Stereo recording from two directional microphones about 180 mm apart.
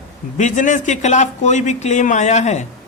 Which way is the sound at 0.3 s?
45° left (ahead or behind).